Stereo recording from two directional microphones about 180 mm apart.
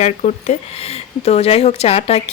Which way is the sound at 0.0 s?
40° left (ahead or behind).